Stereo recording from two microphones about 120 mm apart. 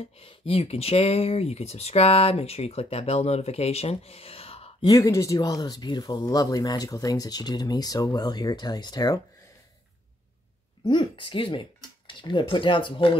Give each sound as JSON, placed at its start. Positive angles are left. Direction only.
{"t": 0.2, "sound": "speech", "side_deg": 55}
{"t": 4.8, "sound": "speech", "side_deg": 30}
{"t": 10.8, "sound": "speech", "side_deg": 40}